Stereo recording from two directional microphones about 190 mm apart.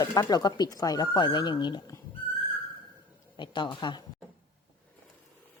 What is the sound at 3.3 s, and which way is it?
Speech, 25° left (ahead or behind).